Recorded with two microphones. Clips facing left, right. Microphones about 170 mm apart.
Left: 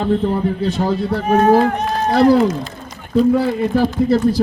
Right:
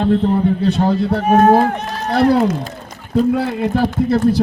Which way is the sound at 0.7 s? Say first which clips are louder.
Right 2 dB; 60° right (ahead or behind).